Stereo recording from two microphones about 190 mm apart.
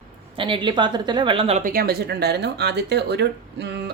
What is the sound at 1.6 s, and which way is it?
A woman's voice, 50° right (ahead or behind).